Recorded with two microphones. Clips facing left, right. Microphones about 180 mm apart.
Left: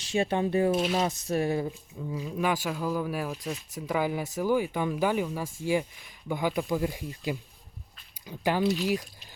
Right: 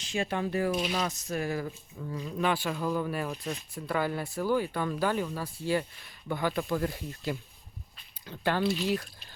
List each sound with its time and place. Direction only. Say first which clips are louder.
0.1 s speech: left 4 dB; 25° left (ahead or behind)
2.0 s speech: left 1 dB; 10° left (ahead or behind)